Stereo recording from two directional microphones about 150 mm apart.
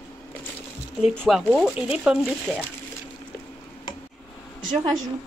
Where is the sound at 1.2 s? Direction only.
5° right (ahead or behind).